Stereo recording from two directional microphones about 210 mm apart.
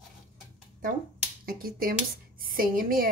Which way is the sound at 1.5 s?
45° right (ahead or behind).